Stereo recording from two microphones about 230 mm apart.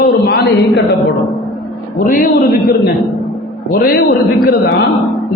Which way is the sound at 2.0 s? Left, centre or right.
Left.